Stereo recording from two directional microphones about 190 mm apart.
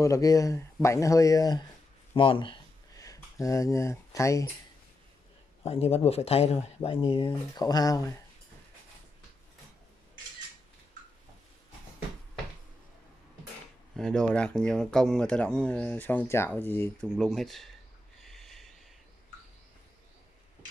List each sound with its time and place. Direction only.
0.0 s speech: 15° left (ahead or behind)
3.0 s speech: 15° left (ahead or behind)
5.7 s speech: 30° left (ahead or behind)
13.9 s speech: 5° left (ahead or behind)
18.3 s snort: centre (ahead or behind)